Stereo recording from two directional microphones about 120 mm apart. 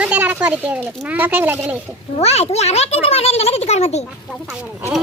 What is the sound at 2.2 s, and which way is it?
A child's voice, 60° left (ahead or behind).